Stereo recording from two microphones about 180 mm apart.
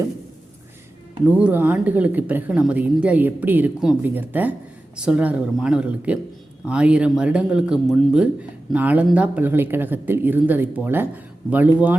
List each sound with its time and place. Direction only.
1.4 s a woman's voice: 10° right (ahead or behind)